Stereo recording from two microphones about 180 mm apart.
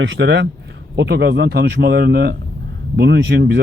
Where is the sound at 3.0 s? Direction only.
75° right (ahead or behind).